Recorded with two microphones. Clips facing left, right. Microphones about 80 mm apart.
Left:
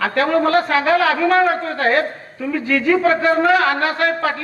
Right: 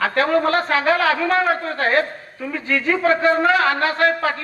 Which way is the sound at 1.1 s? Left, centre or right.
Left.